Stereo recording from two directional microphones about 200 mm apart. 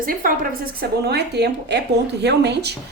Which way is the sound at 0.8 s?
55° right (ahead or behind).